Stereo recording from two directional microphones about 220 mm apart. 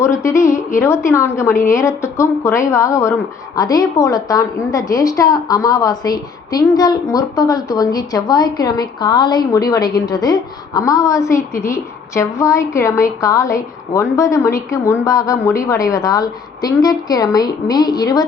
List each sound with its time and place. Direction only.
0.0 s a woman's voice: 15° left (ahead or behind)